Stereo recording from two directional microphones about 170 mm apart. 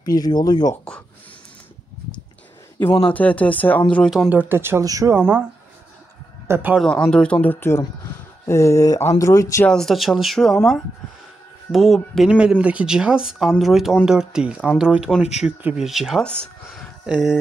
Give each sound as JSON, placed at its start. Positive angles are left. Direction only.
{"t": 0.0, "sound": "speech", "side_deg": 20}
{"t": 3.1, "sound": "speech", "side_deg": 10}
{"t": 6.4, "sound": "a man's voice", "side_deg": -10}
{"t": 6.8, "sound": "speech", "side_deg": 5}
{"t": 9.7, "sound": "speech", "side_deg": 0}